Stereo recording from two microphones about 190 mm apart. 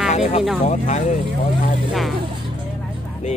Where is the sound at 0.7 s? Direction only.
35° left (ahead or behind).